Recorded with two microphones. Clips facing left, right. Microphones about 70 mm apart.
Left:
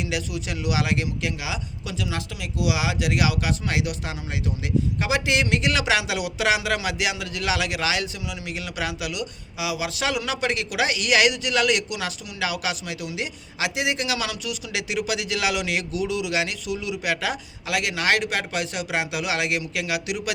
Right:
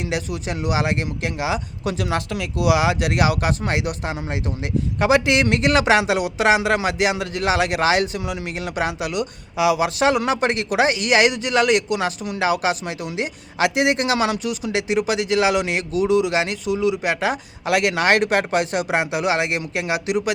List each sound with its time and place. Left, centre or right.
0.0 s a man's voice: right
17.7 s speech: right